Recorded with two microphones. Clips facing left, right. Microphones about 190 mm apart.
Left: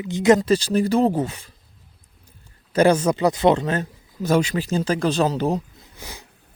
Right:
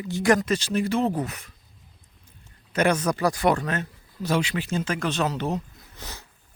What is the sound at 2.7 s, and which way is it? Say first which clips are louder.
Speech: left 6 dB; 30° left (ahead or behind).